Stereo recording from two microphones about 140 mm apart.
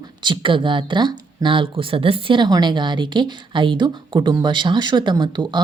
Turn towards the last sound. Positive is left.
turn(degrees=-30)  # may be behind; listen again after turning